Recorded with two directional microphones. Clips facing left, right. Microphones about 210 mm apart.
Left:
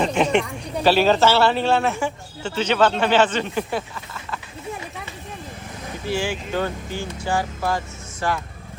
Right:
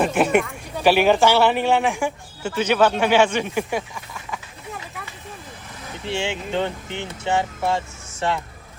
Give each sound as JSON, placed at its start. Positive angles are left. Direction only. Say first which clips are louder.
{"t": 0.0, "sound": "a man's voice", "louder": "right 1 dB", "side_deg": -5}
{"t": 6.1, "sound": "speech", "louder": "left 1 dB", "side_deg": -25}